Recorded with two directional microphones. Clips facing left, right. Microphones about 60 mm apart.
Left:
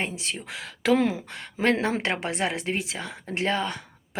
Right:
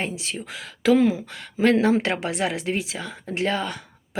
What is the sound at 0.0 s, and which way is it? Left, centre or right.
Speech, left.